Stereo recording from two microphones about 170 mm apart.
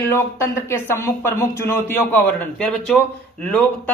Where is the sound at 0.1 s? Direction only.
15° left (ahead or behind).